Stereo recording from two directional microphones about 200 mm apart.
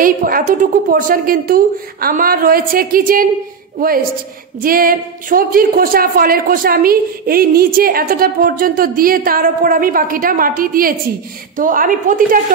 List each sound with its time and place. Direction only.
0.0 s a woman's voice: 45° right (ahead or behind)
4.6 s a woman's voice: 45° right (ahead or behind)